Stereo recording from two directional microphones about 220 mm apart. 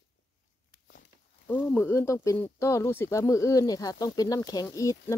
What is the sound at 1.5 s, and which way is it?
Speech, 5° left (ahead or behind).